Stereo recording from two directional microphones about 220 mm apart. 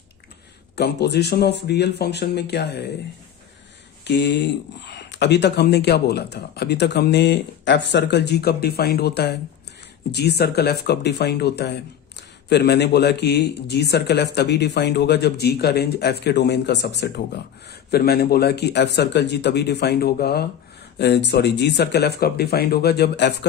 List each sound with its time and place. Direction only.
0.8 s speech: 50° left (ahead or behind)
4.0 s speech: 50° left (ahead or behind)